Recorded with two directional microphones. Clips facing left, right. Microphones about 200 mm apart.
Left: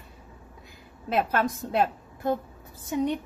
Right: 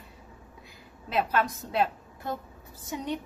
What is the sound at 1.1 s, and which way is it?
A woman's voice, 50° left (ahead or behind).